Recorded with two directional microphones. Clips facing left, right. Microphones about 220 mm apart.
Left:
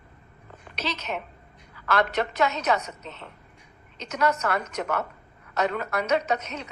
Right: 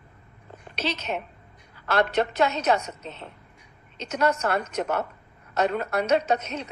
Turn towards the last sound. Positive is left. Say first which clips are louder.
# right 2 dB
turn(degrees=-30)  # may be behind; listen again after turning